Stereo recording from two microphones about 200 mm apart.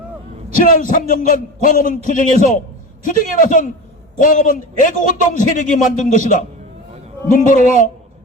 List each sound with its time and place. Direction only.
0.6 s a man's voice: 40° left (ahead or behind)